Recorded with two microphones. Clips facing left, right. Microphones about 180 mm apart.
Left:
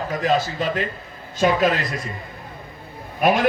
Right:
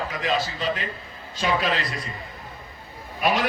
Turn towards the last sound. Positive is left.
turn(degrees=50)  # may be behind; listen again after turning